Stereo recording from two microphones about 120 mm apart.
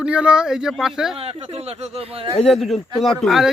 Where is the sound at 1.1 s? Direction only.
55° right (ahead or behind).